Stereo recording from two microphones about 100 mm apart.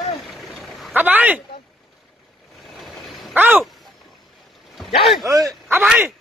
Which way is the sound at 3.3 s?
15° right (ahead or behind).